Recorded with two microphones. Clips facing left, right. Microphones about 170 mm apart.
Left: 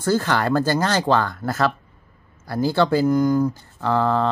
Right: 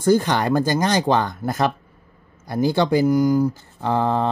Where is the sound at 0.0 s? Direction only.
15° right (ahead or behind).